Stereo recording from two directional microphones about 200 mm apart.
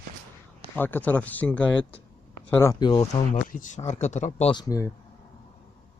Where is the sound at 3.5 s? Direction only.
40° left (ahead or behind); by 4.9 s 15° left (ahead or behind).